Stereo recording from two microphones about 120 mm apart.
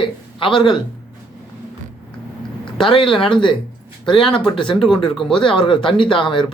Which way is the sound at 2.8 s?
45° left (ahead or behind).